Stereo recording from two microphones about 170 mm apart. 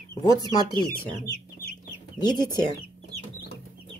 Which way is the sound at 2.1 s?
25° left (ahead or behind).